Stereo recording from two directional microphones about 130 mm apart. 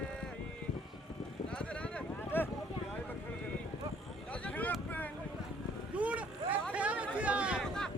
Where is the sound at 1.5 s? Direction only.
10° left (ahead or behind).